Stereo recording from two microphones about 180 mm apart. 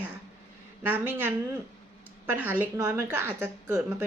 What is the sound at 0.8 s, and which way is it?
Speech, 10° right (ahead or behind).